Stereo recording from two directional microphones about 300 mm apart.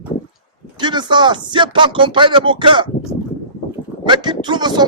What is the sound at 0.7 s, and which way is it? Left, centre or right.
Speech, centre.